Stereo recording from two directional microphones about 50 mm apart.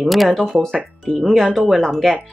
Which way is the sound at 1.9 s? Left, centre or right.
Centre.